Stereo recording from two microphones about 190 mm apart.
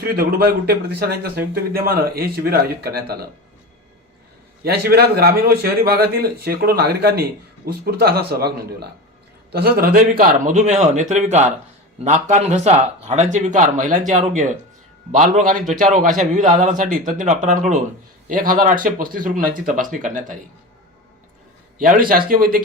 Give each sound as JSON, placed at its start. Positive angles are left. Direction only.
{"t": 0.0, "sound": "a man's voice", "side_deg": -55}
{"t": 4.6, "sound": "a man's voice", "side_deg": -55}
{"t": 21.8, "sound": "a man's voice", "side_deg": -45}